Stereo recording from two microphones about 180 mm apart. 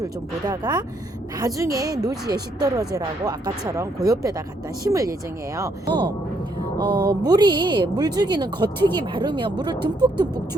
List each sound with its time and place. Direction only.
0.0 s speech: 20° right (ahead or behind)